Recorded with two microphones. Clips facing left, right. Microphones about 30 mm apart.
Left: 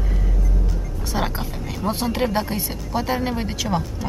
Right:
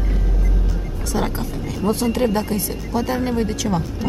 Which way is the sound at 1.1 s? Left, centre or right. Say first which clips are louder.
Right 2 dB; centre.